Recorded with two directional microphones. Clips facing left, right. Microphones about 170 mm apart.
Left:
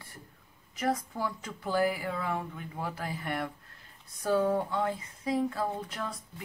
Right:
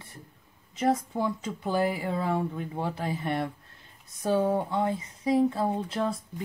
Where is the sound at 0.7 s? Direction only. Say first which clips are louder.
Right 5 dB; 25° right (ahead or behind).